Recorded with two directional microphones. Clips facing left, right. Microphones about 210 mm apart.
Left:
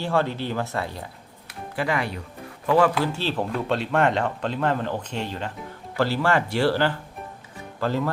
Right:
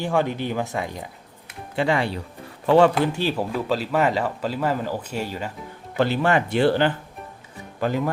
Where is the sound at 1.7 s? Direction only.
25° right (ahead or behind).